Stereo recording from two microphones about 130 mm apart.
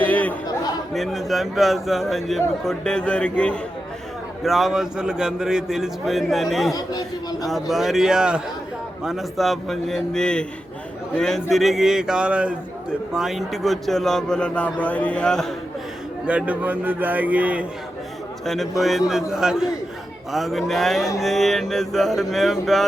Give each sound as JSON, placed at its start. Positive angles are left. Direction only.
{"t": 0.0, "sound": "chatter", "side_deg": 10}
{"t": 0.9, "sound": "a man's voice", "side_deg": 0}
{"t": 6.7, "sound": "speech", "side_deg": 30}
{"t": 7.4, "sound": "a man's voice", "side_deg": 0}
{"t": 16.2, "sound": "a man's voice", "side_deg": -10}
{"t": 18.4, "sound": "a man's voice", "side_deg": 0}